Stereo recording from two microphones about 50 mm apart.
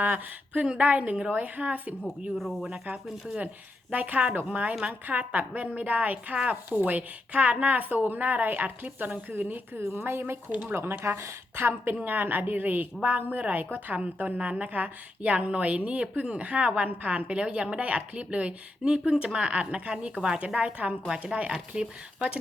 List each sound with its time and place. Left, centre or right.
0.0 s a woman's voice: right
0.6 s a woman's voice: right
2.4 s speech: centre
3.9 s a woman's voice: right
6.7 s a woman's voice: right
9.7 s a woman's voice: right
10.5 s a woman's voice: right
10.8 s a woman's voice: right; by 22.4 s centre